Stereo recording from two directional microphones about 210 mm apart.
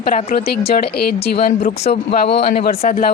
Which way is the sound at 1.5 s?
35° left (ahead or behind).